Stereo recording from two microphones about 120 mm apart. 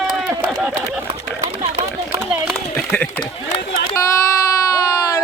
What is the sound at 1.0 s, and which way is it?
Chatter, 50° right (ahead or behind).